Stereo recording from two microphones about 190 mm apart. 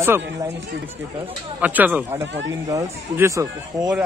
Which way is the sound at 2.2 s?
70° right (ahead or behind).